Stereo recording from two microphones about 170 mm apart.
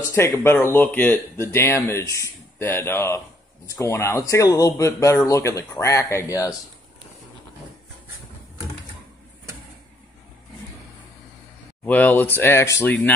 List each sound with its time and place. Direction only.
0.1 s speech: 15° left (ahead or behind)
11.8 s speech: 10° left (ahead or behind)